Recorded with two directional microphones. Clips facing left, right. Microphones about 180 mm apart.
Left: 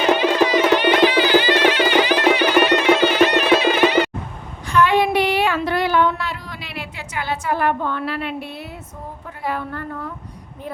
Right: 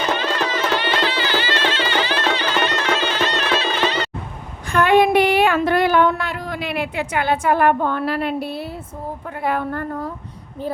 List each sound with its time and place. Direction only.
0.0 s music: 15° left (ahead or behind)
4.7 s a sound: 50° right (ahead or behind)
9.4 s a woman's voice: 55° right (ahead or behind)